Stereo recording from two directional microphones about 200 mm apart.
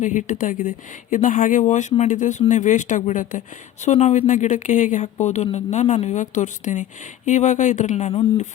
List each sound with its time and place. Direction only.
0.0 s speech: 40° left (ahead or behind)